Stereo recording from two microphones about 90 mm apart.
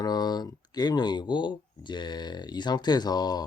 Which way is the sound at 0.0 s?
50° left (ahead or behind).